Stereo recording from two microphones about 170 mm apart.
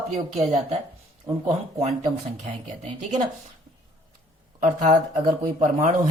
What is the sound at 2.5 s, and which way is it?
Speech, 45° right (ahead or behind).